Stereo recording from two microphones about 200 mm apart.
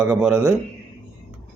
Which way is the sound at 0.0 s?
5° right (ahead or behind).